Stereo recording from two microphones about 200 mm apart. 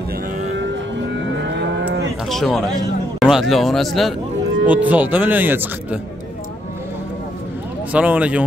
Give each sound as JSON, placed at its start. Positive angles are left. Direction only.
{"t": 1.4, "sound": "livestock", "side_deg": -60}
{"t": 2.2, "sound": "speech", "side_deg": 0}
{"t": 7.9, "sound": "speech", "side_deg": -5}